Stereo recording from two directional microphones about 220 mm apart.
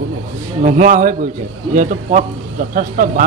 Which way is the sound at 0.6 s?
35° right (ahead or behind).